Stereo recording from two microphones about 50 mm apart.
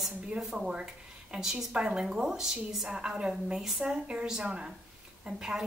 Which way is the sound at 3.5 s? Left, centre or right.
Centre.